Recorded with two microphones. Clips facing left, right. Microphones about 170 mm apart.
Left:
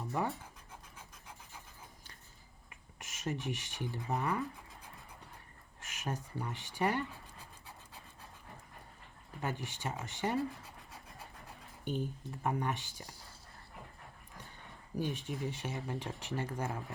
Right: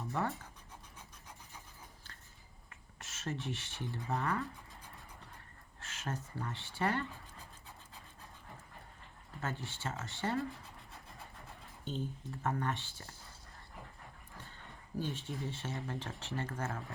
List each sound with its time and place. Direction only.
0.0 s speech: 15° left (ahead or behind)
2.6 s a sound: 15° left (ahead or behind)
3.9 s speech: 15° left (ahead or behind)
5.8 s speech: 15° left (ahead or behind)
9.4 s speech: 15° left (ahead or behind)
11.9 s speech: 15° left (ahead or behind)
14.3 s speech: 15° left (ahead or behind)